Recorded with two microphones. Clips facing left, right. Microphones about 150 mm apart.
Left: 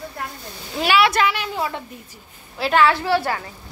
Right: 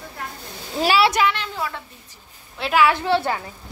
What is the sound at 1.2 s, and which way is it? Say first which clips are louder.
Speech: left 1 dB; 10° left (ahead or behind).